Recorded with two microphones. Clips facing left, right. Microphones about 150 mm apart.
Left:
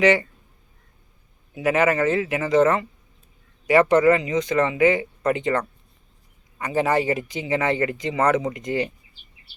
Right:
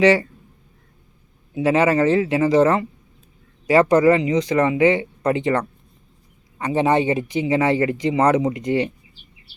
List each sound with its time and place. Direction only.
1.5 s speech: 25° right (ahead or behind)